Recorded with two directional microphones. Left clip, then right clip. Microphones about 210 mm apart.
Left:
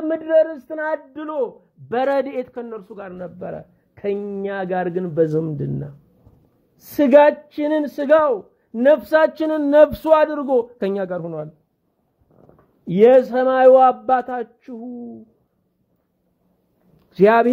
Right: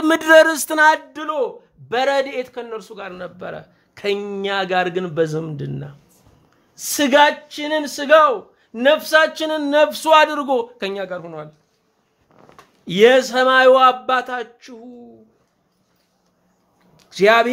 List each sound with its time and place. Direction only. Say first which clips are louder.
0.1 s speech: right 6 dB; 25° right (ahead or behind)
1.1 s a man's voice: right 2 dB; 10° left (ahead or behind)
7.0 s speech: left 2 dB; 20° left (ahead or behind)
12.8 s speech: even; 20° left (ahead or behind)
16.9 s a sound: even; 35° left (ahead or behind)